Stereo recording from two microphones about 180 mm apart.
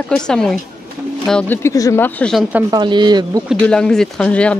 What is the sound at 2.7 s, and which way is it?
Speech, 25° right (ahead or behind).